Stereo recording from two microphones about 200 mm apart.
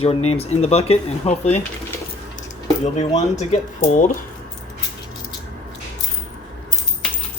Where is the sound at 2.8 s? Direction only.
35° left (ahead or behind).